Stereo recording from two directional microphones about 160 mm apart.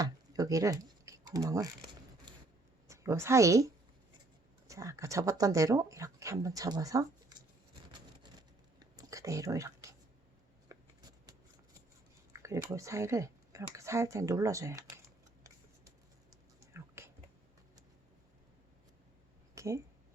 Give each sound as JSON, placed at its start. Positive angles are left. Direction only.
{"t": 0.0, "sound": "typing", "side_deg": -20}
{"t": 2.8, "sound": "a woman's voice", "side_deg": -20}
{"t": 4.7, "sound": "speech", "side_deg": -20}
{"t": 7.9, "sound": "whispering", "side_deg": -25}
{"t": 10.7, "sound": "a sound", "side_deg": -25}
{"t": 12.3, "sound": "speech", "side_deg": -20}
{"t": 16.6, "sound": "dog", "side_deg": -15}
{"t": 19.5, "sound": "a sound", "side_deg": -20}